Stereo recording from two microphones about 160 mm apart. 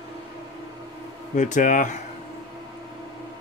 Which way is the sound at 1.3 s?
50° left (ahead or behind).